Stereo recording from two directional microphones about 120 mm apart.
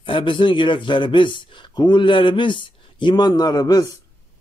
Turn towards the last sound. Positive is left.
turn(degrees=35)  # may be behind; listen again after turning